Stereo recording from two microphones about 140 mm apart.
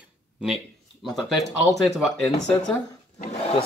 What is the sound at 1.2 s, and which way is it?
Speech, centre (ahead or behind).